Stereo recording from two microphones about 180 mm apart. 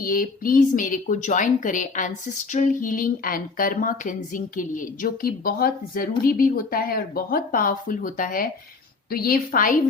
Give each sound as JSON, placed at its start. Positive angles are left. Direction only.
{"t": 0.0, "sound": "a woman's voice", "side_deg": 50}